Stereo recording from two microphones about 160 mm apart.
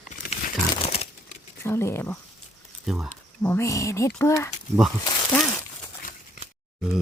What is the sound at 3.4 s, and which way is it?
Speech, 15° left (ahead or behind).